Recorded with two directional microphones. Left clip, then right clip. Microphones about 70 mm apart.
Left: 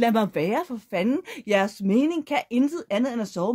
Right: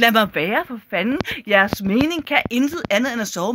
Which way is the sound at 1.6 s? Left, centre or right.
Left.